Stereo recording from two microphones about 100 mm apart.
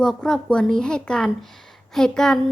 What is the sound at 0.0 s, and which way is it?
A woman's voice, 5° left (ahead or behind).